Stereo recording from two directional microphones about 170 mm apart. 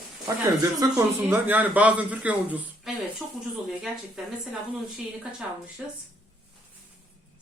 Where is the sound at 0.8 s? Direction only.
15° right (ahead or behind).